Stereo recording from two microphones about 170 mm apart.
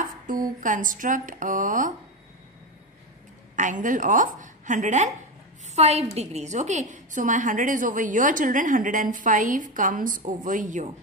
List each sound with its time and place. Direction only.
0.0 s a woman's voice: 50° right (ahead or behind)
3.5 s a woman's voice: 45° right (ahead or behind)